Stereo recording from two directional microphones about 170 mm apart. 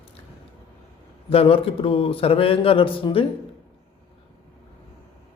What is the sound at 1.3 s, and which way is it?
Speech, 35° left (ahead or behind).